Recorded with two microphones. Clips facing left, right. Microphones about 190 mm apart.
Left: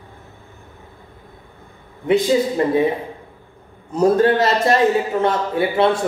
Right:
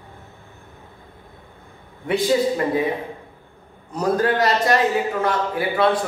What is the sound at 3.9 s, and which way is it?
A man's voice, 25° left (ahead or behind).